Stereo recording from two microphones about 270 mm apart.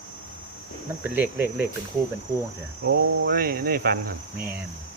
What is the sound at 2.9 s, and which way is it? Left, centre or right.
Cricket, right.